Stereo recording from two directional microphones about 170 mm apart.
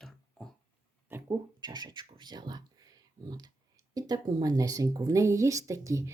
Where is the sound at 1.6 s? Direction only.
25° right (ahead or behind).